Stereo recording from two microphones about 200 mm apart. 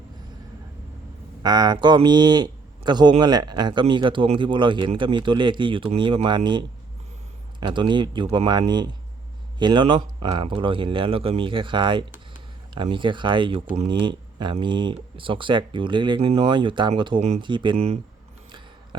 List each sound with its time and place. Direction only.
1.4 s a man's voice: 20° right (ahead or behind)